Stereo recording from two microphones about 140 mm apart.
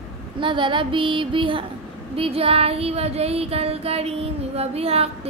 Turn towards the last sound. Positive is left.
turn(degrees=-45)  # may be behind; listen again after turning